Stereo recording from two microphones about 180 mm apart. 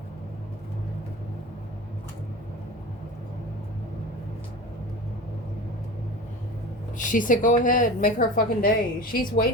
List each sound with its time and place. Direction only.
6.9 s a woman's voice: 45° left (ahead or behind)